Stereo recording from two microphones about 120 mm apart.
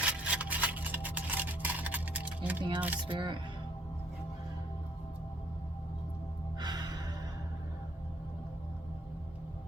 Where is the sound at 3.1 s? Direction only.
40° right (ahead or behind).